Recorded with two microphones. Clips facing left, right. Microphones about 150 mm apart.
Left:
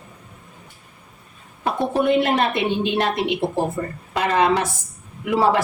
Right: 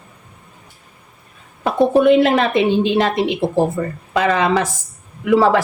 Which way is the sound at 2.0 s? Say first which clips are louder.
Right 4 dB; 90° right.